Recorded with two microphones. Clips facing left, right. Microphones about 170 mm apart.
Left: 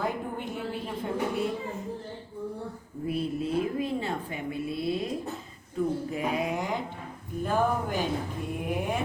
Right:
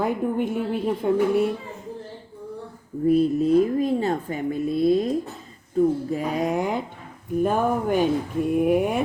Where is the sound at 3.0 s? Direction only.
40° right (ahead or behind).